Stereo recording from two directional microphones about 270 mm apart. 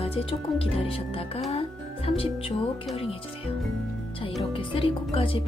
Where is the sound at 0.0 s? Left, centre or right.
Left.